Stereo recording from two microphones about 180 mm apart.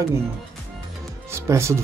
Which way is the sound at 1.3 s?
15° right (ahead or behind).